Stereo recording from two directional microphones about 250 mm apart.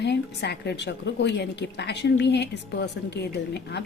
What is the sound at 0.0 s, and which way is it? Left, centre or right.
A woman's voice, left.